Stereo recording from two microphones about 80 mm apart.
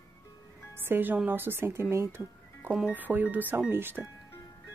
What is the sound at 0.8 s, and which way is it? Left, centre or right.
A woman's voice, right.